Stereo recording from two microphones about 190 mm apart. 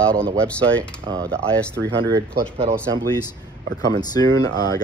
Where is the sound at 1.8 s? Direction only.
25° right (ahead or behind).